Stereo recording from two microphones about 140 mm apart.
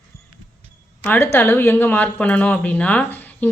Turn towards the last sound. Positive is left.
turn(degrees=10)  # may be behind; listen again after turning